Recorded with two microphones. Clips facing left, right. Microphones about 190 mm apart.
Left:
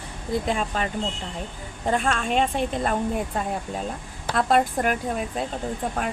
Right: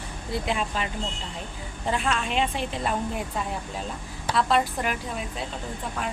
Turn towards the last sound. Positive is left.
turn(degrees=50)  # may be behind; listen again after turning